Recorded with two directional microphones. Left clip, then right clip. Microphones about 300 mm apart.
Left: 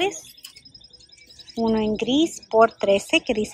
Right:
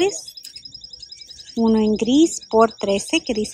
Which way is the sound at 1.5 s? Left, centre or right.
Centre.